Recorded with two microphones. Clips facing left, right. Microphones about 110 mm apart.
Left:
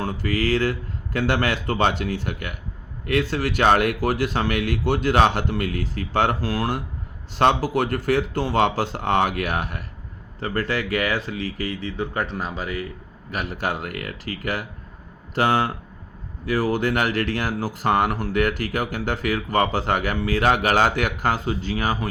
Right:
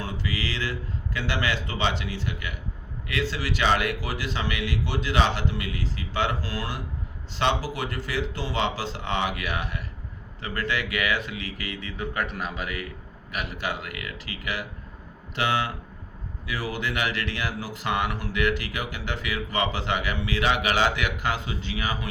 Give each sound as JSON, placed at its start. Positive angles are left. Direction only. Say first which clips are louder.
{"t": 0.0, "sound": "speech", "louder": "left 7 dB", "side_deg": 50}